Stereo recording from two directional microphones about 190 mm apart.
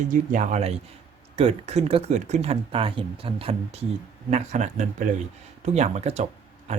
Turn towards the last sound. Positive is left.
turn(degrees=-35)  # may be behind; listen again after turning